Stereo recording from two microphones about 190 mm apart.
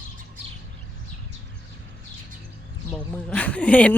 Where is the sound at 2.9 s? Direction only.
5° left (ahead or behind).